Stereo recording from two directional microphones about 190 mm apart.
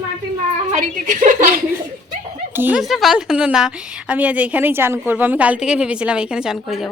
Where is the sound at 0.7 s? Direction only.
40° right (ahead or behind).